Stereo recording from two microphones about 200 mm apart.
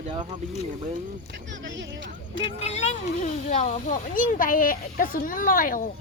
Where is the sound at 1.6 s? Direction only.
65° right (ahead or behind).